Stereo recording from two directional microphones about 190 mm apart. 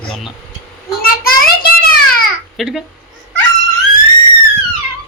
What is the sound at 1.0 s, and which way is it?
Child singing, 50° left (ahead or behind).